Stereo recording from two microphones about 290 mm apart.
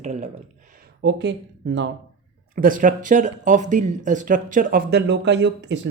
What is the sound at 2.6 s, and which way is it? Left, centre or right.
Speech, right.